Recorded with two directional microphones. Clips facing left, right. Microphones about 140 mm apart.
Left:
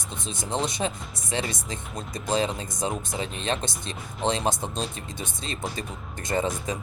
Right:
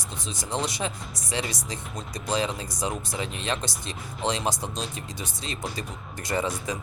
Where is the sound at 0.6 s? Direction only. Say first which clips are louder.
Left 2 dB; 25° left (ahead or behind).